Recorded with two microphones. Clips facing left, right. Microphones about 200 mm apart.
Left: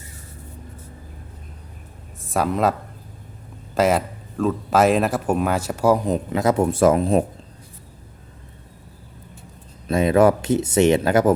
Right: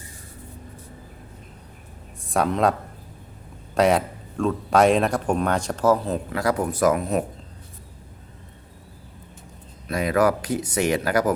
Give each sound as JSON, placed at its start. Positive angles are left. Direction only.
{"t": 2.2, "sound": "speech", "side_deg": 0}
{"t": 3.8, "sound": "speech", "side_deg": 0}
{"t": 9.9, "sound": "speech", "side_deg": 25}